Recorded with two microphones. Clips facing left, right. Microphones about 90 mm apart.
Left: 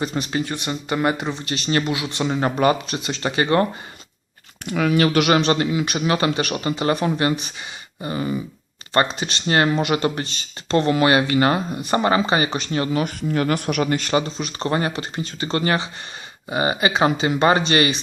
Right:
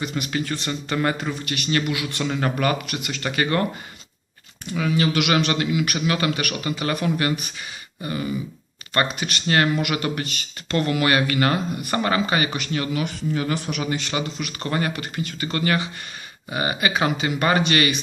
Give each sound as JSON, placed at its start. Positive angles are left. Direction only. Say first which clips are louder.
{"t": 0.0, "sound": "speech", "louder": "left 3 dB", "side_deg": 35}
{"t": 4.6, "sound": "speech", "louder": "left 4 dB", "side_deg": 65}
{"t": 14.2, "sound": "speech", "louder": "left 4 dB", "side_deg": 30}